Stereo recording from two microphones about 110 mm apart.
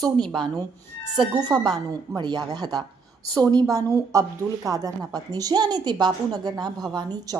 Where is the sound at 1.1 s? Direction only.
45° right (ahead or behind).